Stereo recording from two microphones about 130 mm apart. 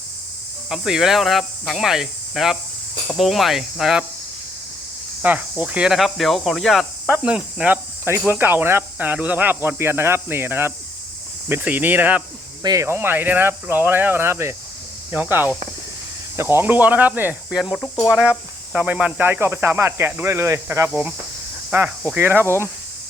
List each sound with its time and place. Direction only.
0.7 s speech: 5° right (ahead or behind)
5.2 s speech: 10° right (ahead or behind)
17.7 s speech: 25° left (ahead or behind)
18.2 s speech: 10° right (ahead or behind)